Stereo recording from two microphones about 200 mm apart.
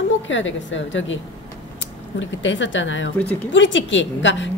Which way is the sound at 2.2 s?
65° left (ahead or behind).